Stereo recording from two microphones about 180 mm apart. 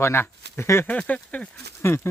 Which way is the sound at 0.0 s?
15° left (ahead or behind).